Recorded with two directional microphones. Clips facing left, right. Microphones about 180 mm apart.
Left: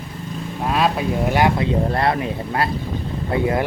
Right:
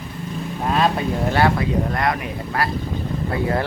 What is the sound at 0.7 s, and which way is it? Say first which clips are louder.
Speech: even; centre (ahead or behind).